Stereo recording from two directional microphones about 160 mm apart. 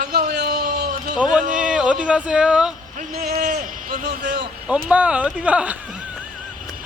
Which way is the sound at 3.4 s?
50° right (ahead or behind).